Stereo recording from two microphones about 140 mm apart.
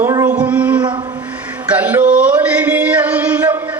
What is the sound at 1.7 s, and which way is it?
Music, 10° right (ahead or behind).